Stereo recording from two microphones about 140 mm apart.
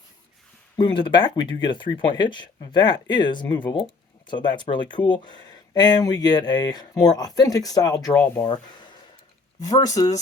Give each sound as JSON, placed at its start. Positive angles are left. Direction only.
{"t": 0.8, "sound": "speech", "side_deg": 35}